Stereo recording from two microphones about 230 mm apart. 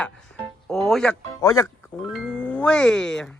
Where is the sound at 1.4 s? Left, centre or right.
Centre.